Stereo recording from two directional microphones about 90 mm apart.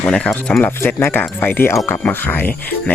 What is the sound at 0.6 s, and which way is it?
Speech, 20° left (ahead or behind).